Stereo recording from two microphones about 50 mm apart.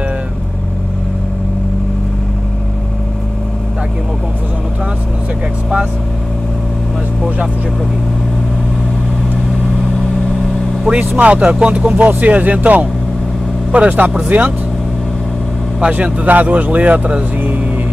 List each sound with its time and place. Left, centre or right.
9.9 s vehicle: centre
11.1 s speech: right
12.1 s speech: right
15.9 s speech: right